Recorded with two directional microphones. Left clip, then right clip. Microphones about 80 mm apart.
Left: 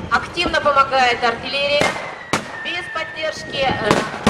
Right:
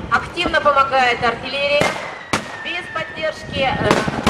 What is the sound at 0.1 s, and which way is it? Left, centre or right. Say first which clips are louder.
Speech: right 1 dB; centre.